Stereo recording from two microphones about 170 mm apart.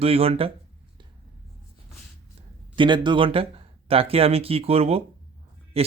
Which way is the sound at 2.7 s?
30° right (ahead or behind).